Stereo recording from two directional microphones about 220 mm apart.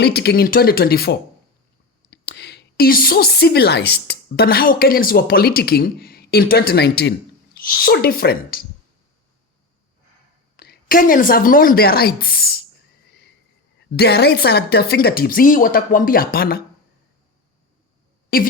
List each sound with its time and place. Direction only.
0.0 s a woman's voice: 45° left (ahead or behind)
10.6 s speech: 40° left (ahead or behind)
13.9 s speech: 45° left (ahead or behind)
18.3 s speech: 40° left (ahead or behind)